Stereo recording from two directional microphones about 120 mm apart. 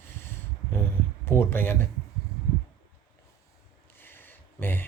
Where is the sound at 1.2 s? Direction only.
20° left (ahead or behind).